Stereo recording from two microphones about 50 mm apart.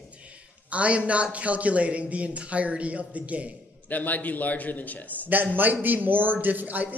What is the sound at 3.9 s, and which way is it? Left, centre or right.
A man's voice, left.